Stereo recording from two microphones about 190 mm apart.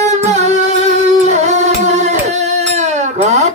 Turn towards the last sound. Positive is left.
turn(degrees=-35)  # may be behind; listen again after turning